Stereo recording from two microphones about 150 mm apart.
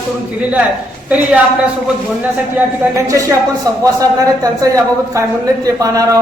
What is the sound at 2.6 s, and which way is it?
Speech, 10° right (ahead or behind).